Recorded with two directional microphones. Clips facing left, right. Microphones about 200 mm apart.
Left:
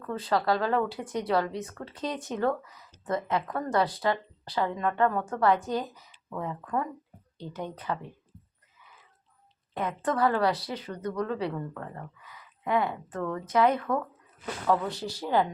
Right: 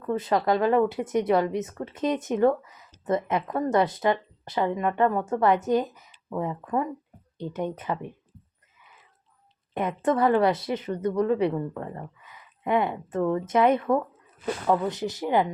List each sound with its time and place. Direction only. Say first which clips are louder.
0.0 s speech: right 4 dB; 20° right (ahead or behind)
9.7 s speech: right 4 dB; 20° right (ahead or behind)